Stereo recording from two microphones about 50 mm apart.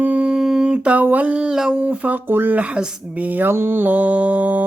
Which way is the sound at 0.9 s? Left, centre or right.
Right.